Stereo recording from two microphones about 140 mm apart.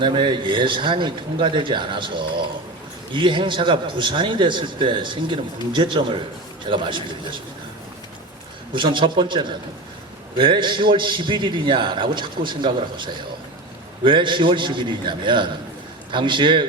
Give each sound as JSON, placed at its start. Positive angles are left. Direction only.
{"t": 0.0, "sound": "a man's voice", "side_deg": -35}
{"t": 8.7, "sound": "a man's voice", "side_deg": -35}